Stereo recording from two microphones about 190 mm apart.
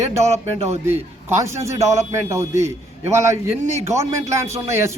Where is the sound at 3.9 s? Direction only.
15° right (ahead or behind).